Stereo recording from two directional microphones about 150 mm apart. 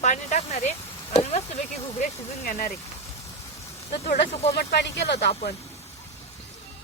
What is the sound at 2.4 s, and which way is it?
Speech, 80° left.